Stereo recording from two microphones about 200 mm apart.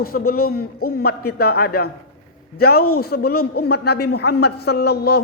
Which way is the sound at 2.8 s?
90° left.